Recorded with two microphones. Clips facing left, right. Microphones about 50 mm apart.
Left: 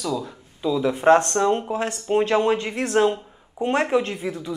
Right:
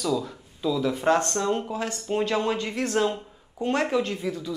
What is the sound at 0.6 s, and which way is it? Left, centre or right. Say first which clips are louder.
Speech: left 3 dB; left.